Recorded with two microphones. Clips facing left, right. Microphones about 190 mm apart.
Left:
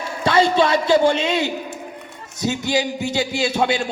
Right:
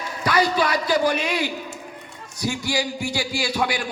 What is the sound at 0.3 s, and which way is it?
A man's voice, 25° left (ahead or behind).